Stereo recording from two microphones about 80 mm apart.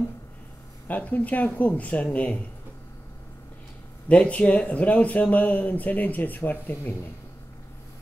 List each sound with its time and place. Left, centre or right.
0.8 s speech: centre
4.1 s speech: centre